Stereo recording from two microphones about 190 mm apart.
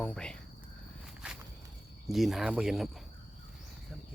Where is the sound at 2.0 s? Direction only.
Centre (ahead or behind).